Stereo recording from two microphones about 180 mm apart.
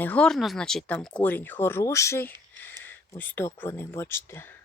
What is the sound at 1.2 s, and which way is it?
Speech, 10° left (ahead or behind).